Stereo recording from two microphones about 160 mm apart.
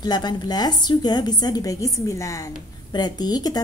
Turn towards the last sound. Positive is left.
turn(degrees=25)  # may be behind; listen again after turning